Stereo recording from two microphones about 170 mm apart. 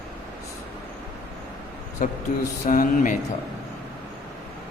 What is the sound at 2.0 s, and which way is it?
A man's voice, 50° left (ahead or behind).